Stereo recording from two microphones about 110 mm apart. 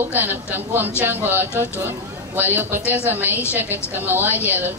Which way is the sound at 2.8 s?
20° left (ahead or behind).